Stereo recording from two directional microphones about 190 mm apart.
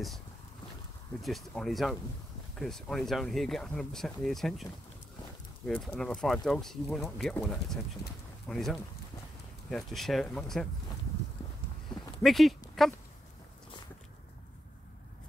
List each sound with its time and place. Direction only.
1.2 s speech: centre (ahead or behind)
5.7 s speech: 5° left (ahead or behind)
12.2 s speech: centre (ahead or behind)